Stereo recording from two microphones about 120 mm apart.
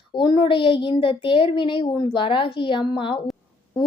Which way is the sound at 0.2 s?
40° left (ahead or behind).